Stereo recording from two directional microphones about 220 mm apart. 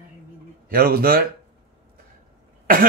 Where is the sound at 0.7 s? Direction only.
45° right (ahead or behind).